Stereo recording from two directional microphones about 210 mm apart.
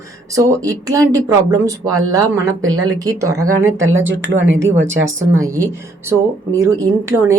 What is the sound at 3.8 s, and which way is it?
Speech, 65° right (ahead or behind).